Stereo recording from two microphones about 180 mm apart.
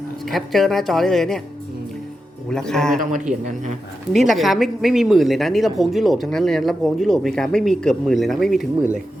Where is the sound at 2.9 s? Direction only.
45° right (ahead or behind).